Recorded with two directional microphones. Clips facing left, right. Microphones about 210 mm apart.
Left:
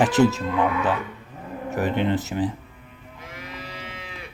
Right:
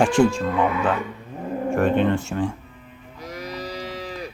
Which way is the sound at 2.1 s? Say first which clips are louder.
Even; 20° left (ahead or behind).